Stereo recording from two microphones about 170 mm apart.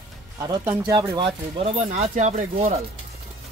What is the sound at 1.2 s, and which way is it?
Speech, 35° right (ahead or behind).